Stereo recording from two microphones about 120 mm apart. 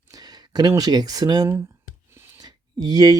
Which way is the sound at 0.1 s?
35° right (ahead or behind).